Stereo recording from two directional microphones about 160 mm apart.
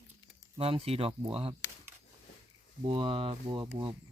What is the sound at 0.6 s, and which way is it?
Speech, 35° right (ahead or behind).